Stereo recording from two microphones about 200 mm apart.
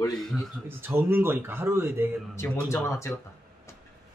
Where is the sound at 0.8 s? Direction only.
10° right (ahead or behind).